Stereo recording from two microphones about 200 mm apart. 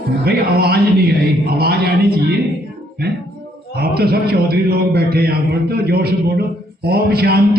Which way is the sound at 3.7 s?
50° right (ahead or behind).